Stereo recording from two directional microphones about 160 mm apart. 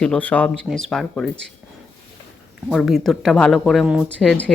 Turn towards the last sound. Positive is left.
turn(degrees=5)  # may be behind; listen again after turning